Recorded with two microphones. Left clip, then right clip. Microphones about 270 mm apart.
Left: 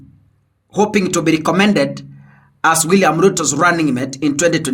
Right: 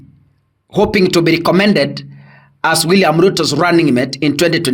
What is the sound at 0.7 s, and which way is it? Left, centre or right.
A man's voice, right.